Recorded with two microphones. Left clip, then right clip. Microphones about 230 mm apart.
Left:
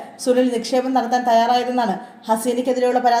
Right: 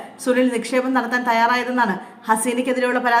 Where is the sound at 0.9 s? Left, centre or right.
Centre.